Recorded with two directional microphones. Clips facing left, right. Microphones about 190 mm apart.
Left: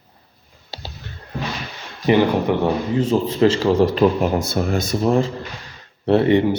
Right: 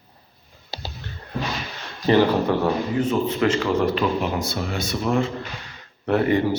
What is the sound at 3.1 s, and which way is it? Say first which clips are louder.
Speech: left 6 dB; 30° left (ahead or behind).